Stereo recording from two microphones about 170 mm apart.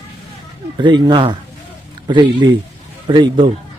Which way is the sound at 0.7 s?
25° right (ahead or behind).